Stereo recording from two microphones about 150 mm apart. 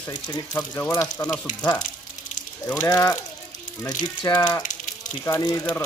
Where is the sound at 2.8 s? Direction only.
20° left (ahead or behind).